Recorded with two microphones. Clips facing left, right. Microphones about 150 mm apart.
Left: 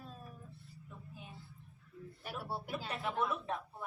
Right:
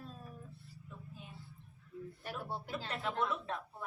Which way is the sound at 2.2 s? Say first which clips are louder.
Left 1 dB; 10° left (ahead or behind).